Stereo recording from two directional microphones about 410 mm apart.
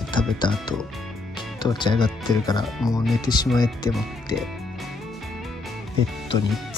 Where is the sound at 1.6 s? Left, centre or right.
Centre.